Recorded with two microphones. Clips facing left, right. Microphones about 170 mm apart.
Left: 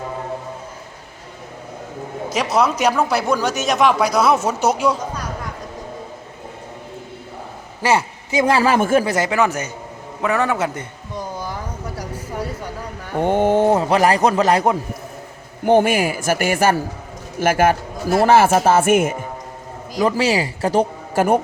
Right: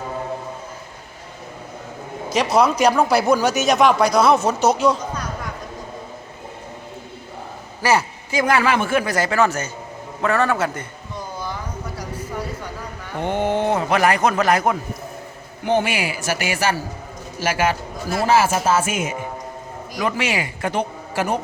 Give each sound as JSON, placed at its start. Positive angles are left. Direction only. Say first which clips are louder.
{"t": 2.3, "sound": "speech", "louder": "right 1 dB", "side_deg": 0}
{"t": 7.8, "sound": "a man's voice", "louder": "left 1 dB", "side_deg": 25}
{"t": 9.0, "sound": "a man's voice", "louder": "left 1 dB", "side_deg": 20}
{"t": 13.1, "sound": "a man's voice", "louder": "left 5 dB", "side_deg": 45}
{"t": 15.6, "sound": "a man's voice", "louder": "left 6 dB", "side_deg": 50}
{"t": 20.0, "sound": "a man's voice", "louder": "left 5 dB", "side_deg": 35}